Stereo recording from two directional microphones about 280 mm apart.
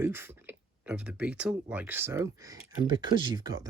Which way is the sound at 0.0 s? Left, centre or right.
Centre.